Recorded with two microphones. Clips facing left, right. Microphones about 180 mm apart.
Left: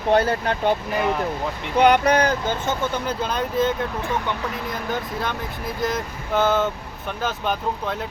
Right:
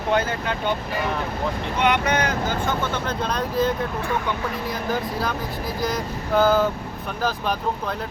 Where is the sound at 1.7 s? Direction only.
35° left (ahead or behind).